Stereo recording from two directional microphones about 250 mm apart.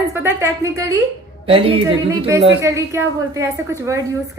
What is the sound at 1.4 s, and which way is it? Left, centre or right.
A woman's voice, right.